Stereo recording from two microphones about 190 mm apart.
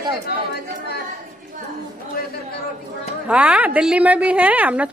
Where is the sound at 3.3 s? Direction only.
5° right (ahead or behind).